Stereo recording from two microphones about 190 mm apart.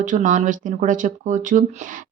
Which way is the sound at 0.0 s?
45° right (ahead or behind).